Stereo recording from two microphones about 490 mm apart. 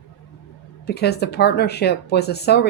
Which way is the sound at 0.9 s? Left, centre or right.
Centre.